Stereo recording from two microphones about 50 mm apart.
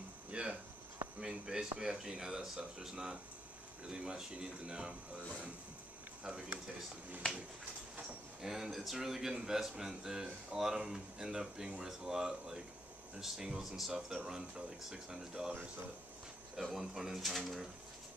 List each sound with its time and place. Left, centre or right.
0.3 s a sound: right
1.2 s speech: centre
6.2 s speech: right
8.4 s speech: centre
16.7 s speech: centre